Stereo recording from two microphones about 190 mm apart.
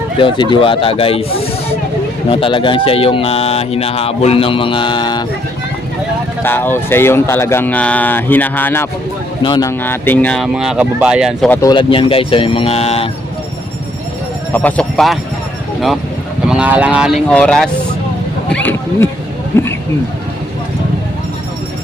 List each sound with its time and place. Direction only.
0.2 s speech: 25° left (ahead or behind)
2.3 s speech: 25° left (ahead or behind)
6.4 s speech: 10° left (ahead or behind)
9.4 s speech: 20° left (ahead or behind); by 11.6 s 5° left (ahead or behind)
11.6 s speech: 25° left (ahead or behind)
14.5 s speech: 5° left (ahead or behind)
16.5 s speech: 5° right (ahead or behind); by 19.7 s 10° left (ahead or behind)